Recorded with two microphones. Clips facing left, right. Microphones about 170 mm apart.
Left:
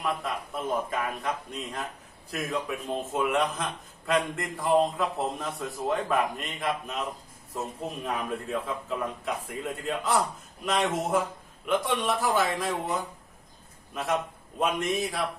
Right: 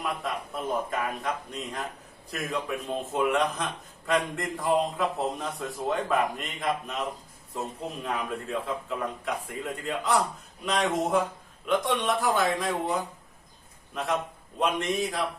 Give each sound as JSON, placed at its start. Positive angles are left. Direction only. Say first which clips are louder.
{"t": 0.9, "sound": "a man's voice", "louder": "even", "side_deg": 0}